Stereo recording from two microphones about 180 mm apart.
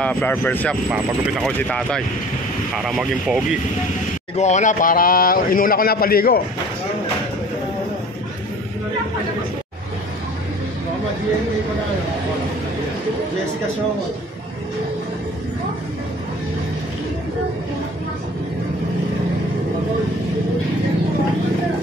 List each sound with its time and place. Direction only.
0.0 s speech: 10° left (ahead or behind)
4.4 s a man's voice: 40° left (ahead or behind); by 6.4 s 55° left (ahead or behind)